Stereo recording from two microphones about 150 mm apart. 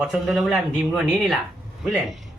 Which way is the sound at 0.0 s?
Centre (ahead or behind).